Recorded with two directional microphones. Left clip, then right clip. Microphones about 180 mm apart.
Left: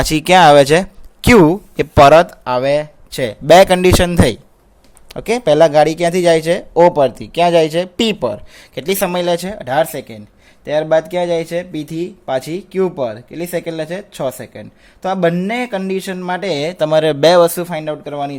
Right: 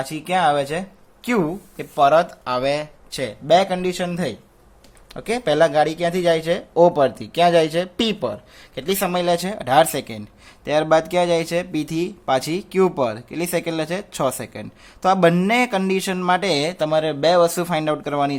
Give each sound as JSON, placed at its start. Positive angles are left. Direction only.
{"t": 0.0, "sound": "speech", "side_deg": 55}
{"t": 5.0, "sound": "speech", "side_deg": 30}
{"t": 17.5, "sound": "speech", "side_deg": 5}